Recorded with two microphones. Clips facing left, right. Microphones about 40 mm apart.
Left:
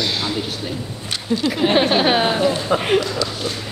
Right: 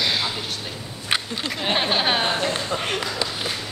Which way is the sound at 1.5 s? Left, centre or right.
Centre.